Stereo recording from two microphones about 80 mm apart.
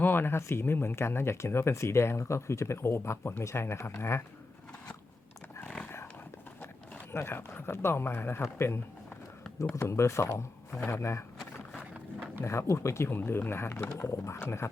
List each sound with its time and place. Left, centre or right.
0.0 s speech: left
7.1 s speech: left
12.4 s speech: left